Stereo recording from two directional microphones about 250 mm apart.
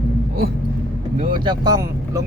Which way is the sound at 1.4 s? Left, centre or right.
Centre.